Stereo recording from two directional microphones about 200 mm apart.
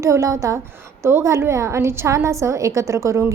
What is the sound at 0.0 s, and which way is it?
A woman's voice, 15° right (ahead or behind).